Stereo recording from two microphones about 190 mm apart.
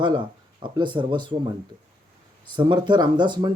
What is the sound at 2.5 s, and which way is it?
Mantra, 25° right (ahead or behind).